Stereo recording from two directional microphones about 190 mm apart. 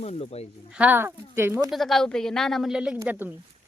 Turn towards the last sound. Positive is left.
turn(degrees=-10)  # may be behind; listen again after turning